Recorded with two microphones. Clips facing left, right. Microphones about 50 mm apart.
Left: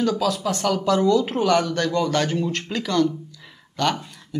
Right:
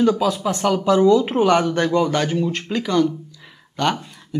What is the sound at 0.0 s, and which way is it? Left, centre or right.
Speech, right.